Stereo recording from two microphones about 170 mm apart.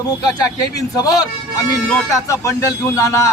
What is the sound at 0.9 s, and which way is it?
A man's voice, 20° left (ahead or behind).